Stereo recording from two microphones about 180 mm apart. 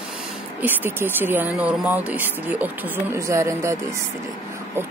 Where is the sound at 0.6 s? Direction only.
10° right (ahead or behind).